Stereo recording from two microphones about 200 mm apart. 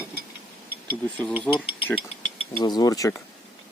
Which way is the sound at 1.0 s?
5° left (ahead or behind).